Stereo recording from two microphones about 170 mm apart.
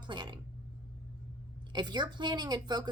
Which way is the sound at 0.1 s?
25° right (ahead or behind).